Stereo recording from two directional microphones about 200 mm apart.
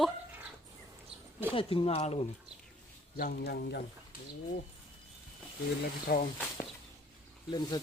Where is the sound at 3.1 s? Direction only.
50° left (ahead or behind).